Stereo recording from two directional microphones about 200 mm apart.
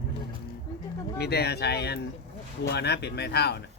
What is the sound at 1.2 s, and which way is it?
Speech, 55° left (ahead or behind).